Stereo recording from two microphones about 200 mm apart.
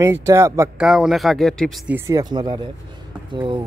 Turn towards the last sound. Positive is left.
turn(degrees=-25)  # may be behind; listen again after turning